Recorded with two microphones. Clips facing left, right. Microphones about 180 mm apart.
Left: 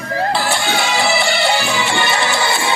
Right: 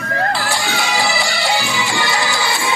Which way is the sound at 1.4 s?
60° left (ahead or behind).